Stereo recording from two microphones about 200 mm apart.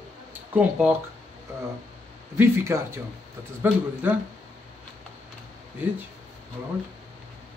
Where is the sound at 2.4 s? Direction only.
15° right (ahead or behind).